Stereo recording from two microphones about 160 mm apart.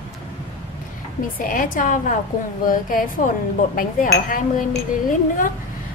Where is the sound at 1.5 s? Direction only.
55° left (ahead or behind).